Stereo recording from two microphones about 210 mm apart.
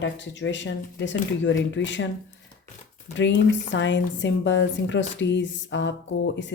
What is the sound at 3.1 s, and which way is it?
A woman's voice, 60° left (ahead or behind).